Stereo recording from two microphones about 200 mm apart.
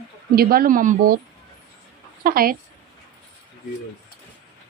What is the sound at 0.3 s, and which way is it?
Speech, 50° right (ahead or behind).